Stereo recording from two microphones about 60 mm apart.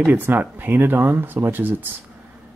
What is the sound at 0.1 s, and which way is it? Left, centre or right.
Speech, right.